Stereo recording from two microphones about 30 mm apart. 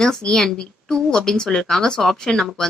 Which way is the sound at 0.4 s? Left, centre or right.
Centre.